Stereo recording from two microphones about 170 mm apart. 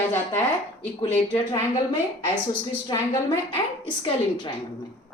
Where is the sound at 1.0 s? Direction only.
30° left (ahead or behind).